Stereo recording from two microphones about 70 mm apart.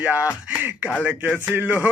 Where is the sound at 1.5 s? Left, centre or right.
Right.